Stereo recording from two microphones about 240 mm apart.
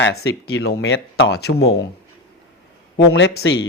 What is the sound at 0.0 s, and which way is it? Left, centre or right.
Speech, left.